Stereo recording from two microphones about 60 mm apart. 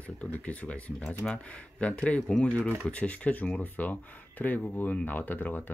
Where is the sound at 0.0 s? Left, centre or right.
Left.